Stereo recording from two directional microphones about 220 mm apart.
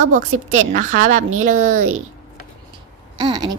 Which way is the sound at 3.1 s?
20° right (ahead or behind).